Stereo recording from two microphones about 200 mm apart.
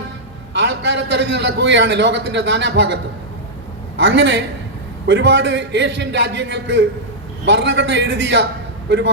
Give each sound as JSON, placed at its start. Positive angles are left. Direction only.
{"t": 0.5, "sound": "a man's voice", "side_deg": -65}